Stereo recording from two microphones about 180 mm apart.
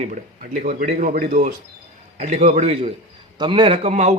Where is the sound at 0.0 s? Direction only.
40° right (ahead or behind).